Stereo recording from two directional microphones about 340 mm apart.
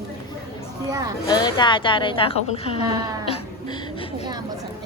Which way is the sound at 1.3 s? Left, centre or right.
Centre.